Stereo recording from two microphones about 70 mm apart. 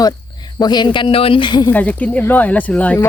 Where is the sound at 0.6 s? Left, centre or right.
Left.